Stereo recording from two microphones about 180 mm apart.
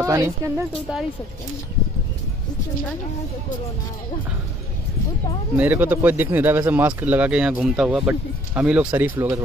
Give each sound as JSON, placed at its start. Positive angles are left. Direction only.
{"t": 0.0, "sound": "speech", "side_deg": -15}
{"t": 5.6, "sound": "speech", "side_deg": -10}